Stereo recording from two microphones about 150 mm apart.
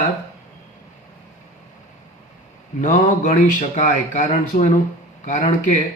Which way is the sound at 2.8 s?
55° left (ahead or behind).